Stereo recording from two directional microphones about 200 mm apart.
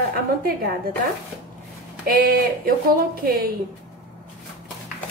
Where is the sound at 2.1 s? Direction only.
45° right (ahead or behind).